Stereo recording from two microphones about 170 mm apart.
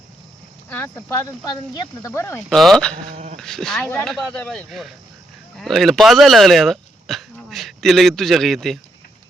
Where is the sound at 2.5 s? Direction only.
5° left (ahead or behind).